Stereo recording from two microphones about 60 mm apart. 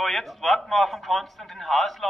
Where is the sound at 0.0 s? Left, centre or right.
Centre.